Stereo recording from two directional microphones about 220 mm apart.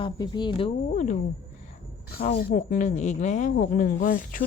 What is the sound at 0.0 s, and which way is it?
Speech, 20° left (ahead or behind).